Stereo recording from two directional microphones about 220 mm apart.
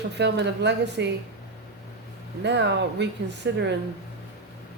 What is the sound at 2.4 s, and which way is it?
Speech, 50° right (ahead or behind).